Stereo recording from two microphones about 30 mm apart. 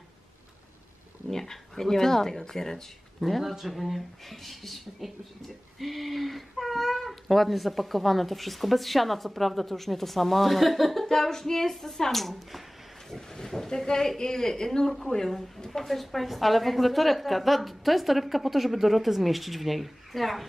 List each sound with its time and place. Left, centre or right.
1.3 s speech: centre
3.2 s speech: centre
11.1 s speech: centre